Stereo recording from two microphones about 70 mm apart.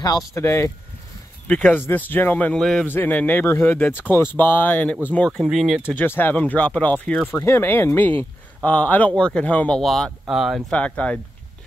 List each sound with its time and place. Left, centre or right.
0.3 s speech: left
1.7 s speech: left
2.5 s speech: centre
2.9 s speech: left
3.4 s speech: left; by 5.4 s centre
5.4 s speech: centre
5.9 s speech: left
7.3 s speech: left; by 9.8 s centre
9.8 s speech: centre
10.7 s speech: centre